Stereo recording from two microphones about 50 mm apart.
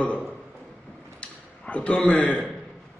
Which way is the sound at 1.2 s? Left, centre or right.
Left.